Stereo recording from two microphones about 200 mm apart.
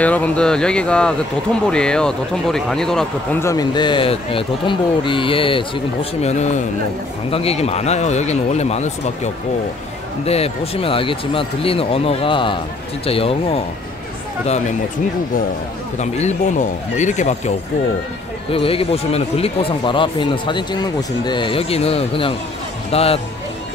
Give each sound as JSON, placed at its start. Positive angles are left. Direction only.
{"t": 0.0, "sound": "a man's voice", "side_deg": 5}
{"t": 16.0, "sound": "a man's voice", "side_deg": 35}
{"t": 18.5, "sound": "speech", "side_deg": 30}